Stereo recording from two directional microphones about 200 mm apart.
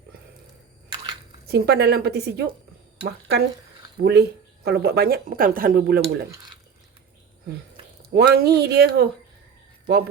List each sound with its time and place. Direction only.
1.5 s speech: 50° right (ahead or behind)
8.1 s speech: 50° right (ahead or behind)